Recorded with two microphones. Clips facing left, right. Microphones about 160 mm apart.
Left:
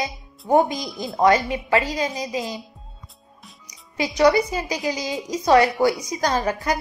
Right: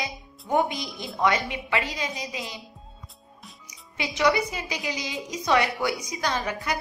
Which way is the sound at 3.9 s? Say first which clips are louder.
Left 6 dB; 40° left (ahead or behind).